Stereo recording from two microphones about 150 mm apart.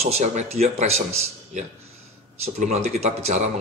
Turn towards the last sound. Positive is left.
turn(degrees=-50)  # may be behind; listen again after turning